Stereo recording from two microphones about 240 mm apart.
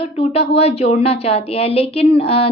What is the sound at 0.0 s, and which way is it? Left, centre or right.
Speech, left.